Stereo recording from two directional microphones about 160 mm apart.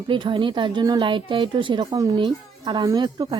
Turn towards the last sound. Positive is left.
turn(degrees=-25)  # may be behind; listen again after turning